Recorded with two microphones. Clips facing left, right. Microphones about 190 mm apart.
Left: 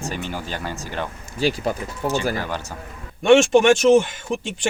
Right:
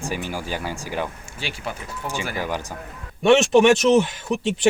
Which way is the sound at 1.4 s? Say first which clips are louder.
Left 10 dB; 40° left (ahead or behind).